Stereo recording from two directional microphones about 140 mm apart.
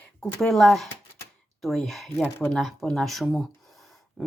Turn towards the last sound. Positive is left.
turn(degrees=0)  # may be behind; listen again after turning